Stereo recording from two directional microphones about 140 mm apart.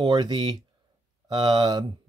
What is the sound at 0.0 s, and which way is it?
Speech, 30° right (ahead or behind).